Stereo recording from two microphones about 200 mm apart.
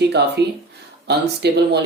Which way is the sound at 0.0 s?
55° right (ahead or behind).